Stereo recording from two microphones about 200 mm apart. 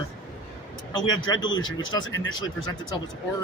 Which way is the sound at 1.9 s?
20° left (ahead or behind).